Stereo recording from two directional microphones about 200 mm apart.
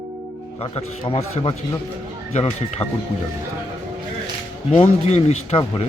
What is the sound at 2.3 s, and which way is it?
Speech, 35° left (ahead or behind).